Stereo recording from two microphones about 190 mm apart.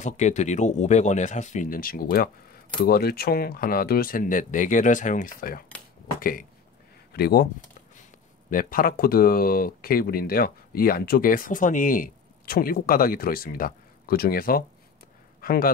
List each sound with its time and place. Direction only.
0.0 s speech: 40° left (ahead or behind); by 7.4 s 55° left (ahead or behind)
8.5 s speech: 45° left (ahead or behind)